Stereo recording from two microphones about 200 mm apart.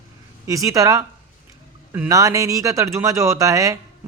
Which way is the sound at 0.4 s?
15° right (ahead or behind).